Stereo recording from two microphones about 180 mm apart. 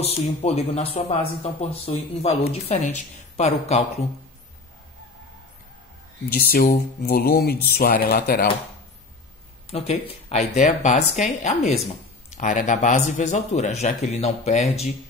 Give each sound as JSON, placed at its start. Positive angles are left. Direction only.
{"t": 0.0, "sound": "a man's voice", "side_deg": 35}
{"t": 6.3, "sound": "speech", "side_deg": 55}
{"t": 9.7, "sound": "a man's voice", "side_deg": 35}